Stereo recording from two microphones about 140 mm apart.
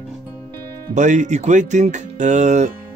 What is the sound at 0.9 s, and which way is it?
Speech, 60° right (ahead or behind).